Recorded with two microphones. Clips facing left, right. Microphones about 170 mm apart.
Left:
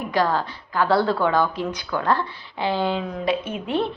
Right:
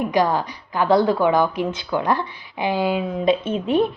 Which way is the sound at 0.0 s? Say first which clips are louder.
Right 3 dB; 15° right (ahead or behind).